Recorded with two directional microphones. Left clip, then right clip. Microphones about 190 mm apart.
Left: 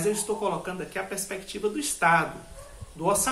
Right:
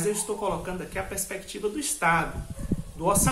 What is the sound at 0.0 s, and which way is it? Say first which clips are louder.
Speech: left 1 dB; 5° left (ahead or behind).